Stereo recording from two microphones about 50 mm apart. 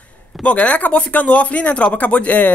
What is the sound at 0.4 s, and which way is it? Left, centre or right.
Speech, left.